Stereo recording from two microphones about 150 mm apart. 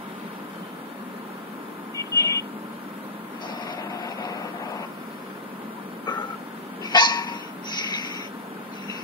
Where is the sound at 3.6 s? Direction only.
25° left (ahead or behind).